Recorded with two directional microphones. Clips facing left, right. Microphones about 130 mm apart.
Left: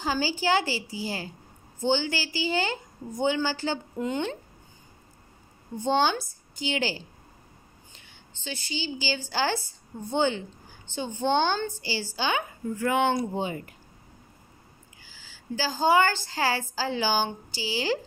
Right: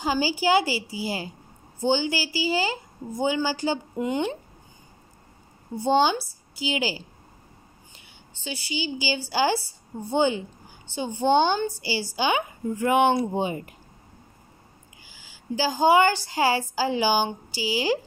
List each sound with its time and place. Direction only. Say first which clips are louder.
0.0 s a woman's voice: right 3 dB; 10° right (ahead or behind)
5.8 s a woman's voice: right 3 dB; 10° right (ahead or behind)
15.0 s a woman's voice: right 3 dB; 15° right (ahead or behind)